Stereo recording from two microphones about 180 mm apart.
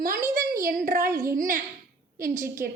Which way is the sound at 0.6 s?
50° right (ahead or behind).